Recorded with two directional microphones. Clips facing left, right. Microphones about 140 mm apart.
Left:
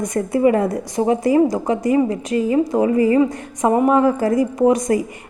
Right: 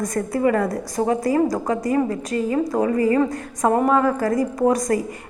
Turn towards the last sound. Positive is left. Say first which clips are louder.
# left 3 dB
turn(degrees=25)  # may be behind; listen again after turning